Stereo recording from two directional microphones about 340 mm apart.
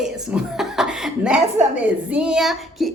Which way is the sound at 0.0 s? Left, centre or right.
Centre.